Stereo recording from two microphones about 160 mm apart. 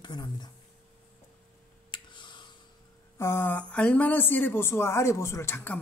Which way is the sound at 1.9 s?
30° left (ahead or behind).